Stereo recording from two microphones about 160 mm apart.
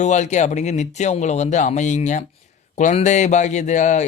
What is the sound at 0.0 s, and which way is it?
A man's voice, 45° left (ahead or behind).